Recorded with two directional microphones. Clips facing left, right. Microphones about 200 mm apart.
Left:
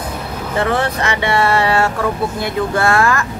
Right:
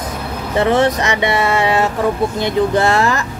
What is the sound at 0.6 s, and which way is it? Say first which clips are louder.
Speech: right 4 dB; 20° right (ahead or behind).